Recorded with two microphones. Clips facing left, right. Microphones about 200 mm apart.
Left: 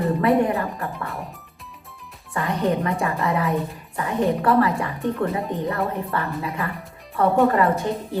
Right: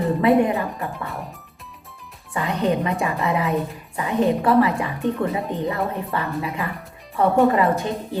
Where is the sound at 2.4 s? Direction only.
20° right (ahead or behind).